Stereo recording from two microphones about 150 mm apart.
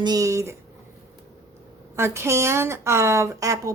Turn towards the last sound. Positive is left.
turn(degrees=-20)  # may be behind; listen again after turning